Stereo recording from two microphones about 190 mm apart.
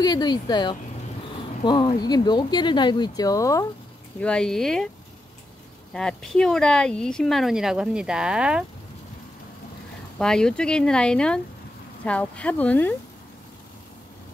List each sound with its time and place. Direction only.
0.0 s speech: 20° left (ahead or behind)
4.2 s speech: 5° left (ahead or behind)
5.9 s speech: 5° left (ahead or behind)
10.1 s speech: 5° left (ahead or behind)